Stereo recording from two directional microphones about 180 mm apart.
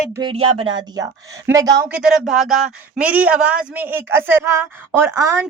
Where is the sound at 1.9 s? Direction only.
5° right (ahead or behind).